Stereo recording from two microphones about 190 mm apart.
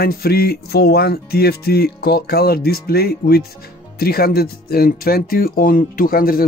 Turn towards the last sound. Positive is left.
turn(degrees=50)  # may be behind; listen again after turning